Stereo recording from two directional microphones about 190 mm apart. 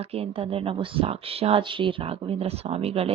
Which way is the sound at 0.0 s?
30° right (ahead or behind).